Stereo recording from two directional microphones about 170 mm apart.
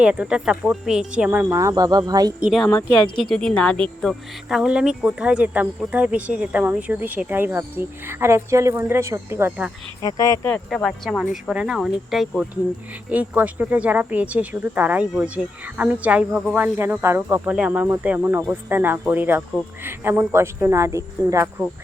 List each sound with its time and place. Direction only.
0.0 s speech: 5° right (ahead or behind); by 2.3 s 20° right (ahead or behind)
2.4 s speech: centre (ahead or behind)
10.0 s speech: 20° left (ahead or behind)
10.5 s speech: 5° left (ahead or behind); by 21.5 s 15° right (ahead or behind)